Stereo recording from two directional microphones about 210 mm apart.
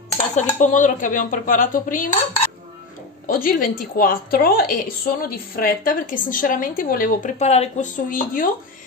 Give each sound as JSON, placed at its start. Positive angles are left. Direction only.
{"t": 0.4, "sound": "a woman's voice", "side_deg": 35}
{"t": 3.3, "sound": "a woman's voice", "side_deg": 40}